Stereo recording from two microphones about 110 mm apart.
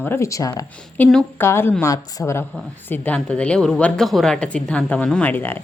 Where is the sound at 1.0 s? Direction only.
15° left (ahead or behind).